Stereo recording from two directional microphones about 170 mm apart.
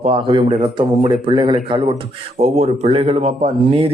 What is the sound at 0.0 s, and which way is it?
A man's voice, 30° right (ahead or behind).